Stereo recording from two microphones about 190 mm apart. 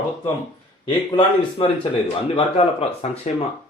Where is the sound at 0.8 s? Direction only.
25° left (ahead or behind).